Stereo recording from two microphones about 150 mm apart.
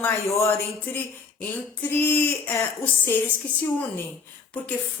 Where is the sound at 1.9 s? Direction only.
15° left (ahead or behind).